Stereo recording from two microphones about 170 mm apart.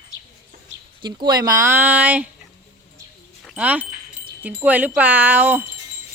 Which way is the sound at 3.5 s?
10° right (ahead or behind).